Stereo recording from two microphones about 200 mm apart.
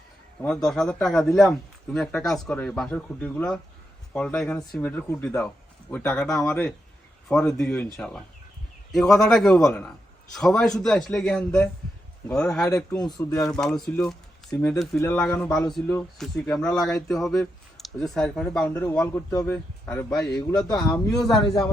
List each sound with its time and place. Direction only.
0.4 s speech: 5° left (ahead or behind)
12.7 s a man's voice: 20° left (ahead or behind)
13.1 s speech: 5° left (ahead or behind)